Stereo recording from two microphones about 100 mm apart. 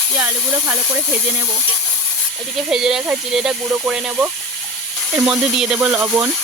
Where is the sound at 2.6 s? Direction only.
5° right (ahead or behind).